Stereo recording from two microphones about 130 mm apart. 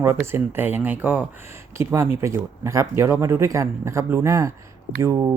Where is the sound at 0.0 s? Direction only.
20° right (ahead or behind).